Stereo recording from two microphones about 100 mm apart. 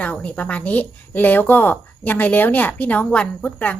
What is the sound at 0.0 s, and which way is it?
A woman's voice, 15° left (ahead or behind).